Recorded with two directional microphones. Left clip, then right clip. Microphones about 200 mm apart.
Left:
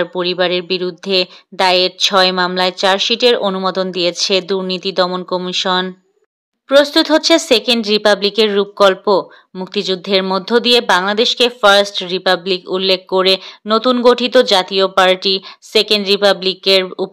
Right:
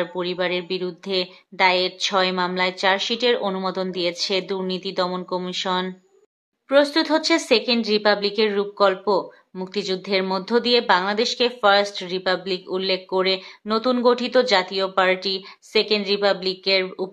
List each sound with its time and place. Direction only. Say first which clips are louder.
0.0 s speech: left 8 dB; 35° left (ahead or behind)